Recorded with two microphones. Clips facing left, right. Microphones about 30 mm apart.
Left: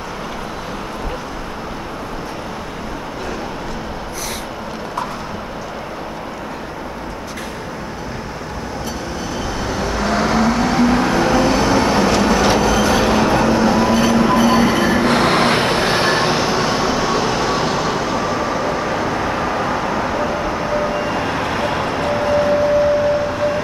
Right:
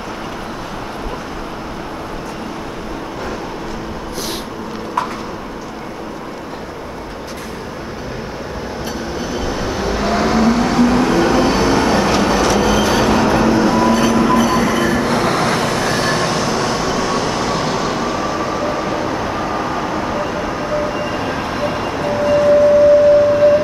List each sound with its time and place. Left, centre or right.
9.3 s vehicle: centre
12.5 s train: centre
15.0 s vehicle: left; by 22.3 s centre
22.4 s a sound: centre